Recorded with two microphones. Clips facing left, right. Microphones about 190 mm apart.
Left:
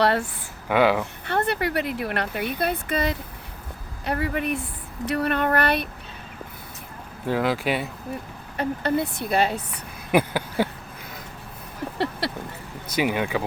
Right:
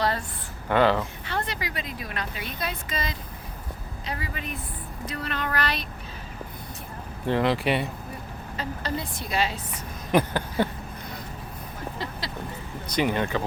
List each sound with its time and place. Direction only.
0.0 s a woman's voice: 70° left (ahead or behind)
0.7 s speech: 10° left (ahead or behind)
1.3 s speech: 60° left (ahead or behind)
7.3 s speech: 5° left (ahead or behind)
8.5 s speech: 55° left (ahead or behind)
10.1 s a sound: 10° left (ahead or behind)
12.2 s speech: 65° left (ahead or behind)
12.9 s speech: 10° left (ahead or behind)